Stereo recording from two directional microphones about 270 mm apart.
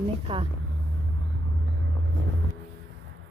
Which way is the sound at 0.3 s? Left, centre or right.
Centre.